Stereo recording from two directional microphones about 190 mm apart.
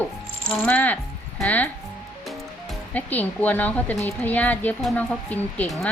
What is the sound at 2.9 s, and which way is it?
Speech, 10° left (ahead or behind).